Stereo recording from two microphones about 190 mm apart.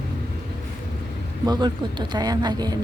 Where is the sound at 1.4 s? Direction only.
25° right (ahead or behind).